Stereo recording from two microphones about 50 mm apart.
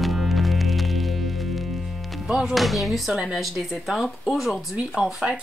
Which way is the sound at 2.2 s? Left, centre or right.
Centre.